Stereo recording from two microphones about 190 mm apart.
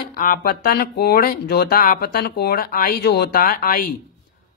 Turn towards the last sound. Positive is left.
turn(degrees=50)  # may be behind; listen again after turning